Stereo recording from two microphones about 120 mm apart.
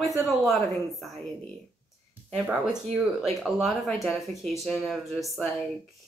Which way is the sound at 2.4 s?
10° right (ahead or behind).